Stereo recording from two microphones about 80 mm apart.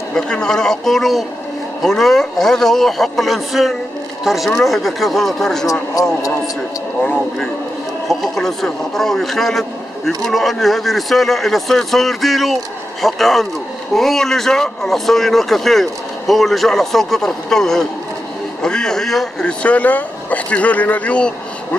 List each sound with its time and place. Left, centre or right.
0.1 s speech: centre
6.0 s speech: left
8.1 s speech: centre
19.4 s speech: centre